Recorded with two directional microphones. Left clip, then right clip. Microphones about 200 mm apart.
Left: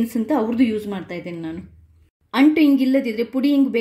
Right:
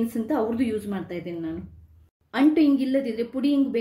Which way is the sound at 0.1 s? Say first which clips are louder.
Left 4 dB; 40° left (ahead or behind).